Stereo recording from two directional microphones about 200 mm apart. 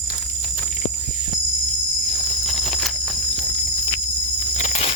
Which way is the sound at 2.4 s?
Centre (ahead or behind).